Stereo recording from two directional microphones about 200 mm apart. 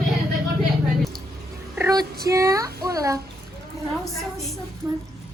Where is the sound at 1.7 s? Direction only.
15° right (ahead or behind).